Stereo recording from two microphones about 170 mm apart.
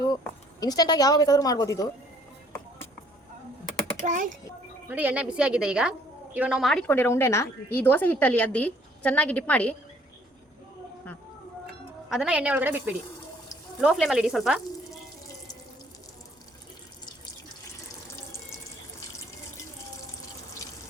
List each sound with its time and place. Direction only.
0.6 s a woman's voice: 20° left (ahead or behind)
4.0 s speech: 50° right (ahead or behind)
4.9 s a woman's voice: 10° right (ahead or behind); by 9.7 s 10° left (ahead or behind)
11.6 s speech: centre (ahead or behind)
13.8 s frying: 5° right (ahead or behind)